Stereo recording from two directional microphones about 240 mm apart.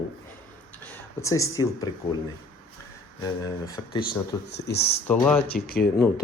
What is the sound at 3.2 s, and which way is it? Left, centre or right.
Speech, centre.